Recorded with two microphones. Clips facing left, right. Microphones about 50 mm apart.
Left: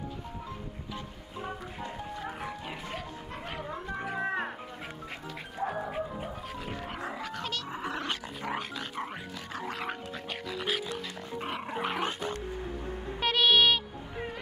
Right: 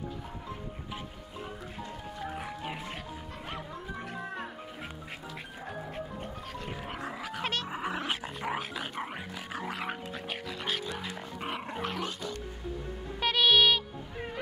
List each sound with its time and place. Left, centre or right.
3.9 s music: centre
5.7 s music: centre
6.9 s a sound: centre
7.7 s dog: centre
10.5 s music: centre
11.7 s dog: centre
12.0 s music: left
13.2 s music: centre